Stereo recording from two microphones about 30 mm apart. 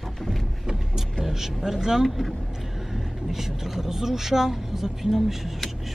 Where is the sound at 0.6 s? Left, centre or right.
Centre.